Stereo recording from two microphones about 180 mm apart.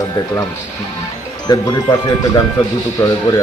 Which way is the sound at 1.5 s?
20° left (ahead or behind).